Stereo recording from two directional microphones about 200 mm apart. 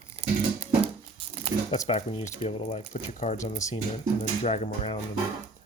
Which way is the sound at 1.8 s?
30° left (ahead or behind).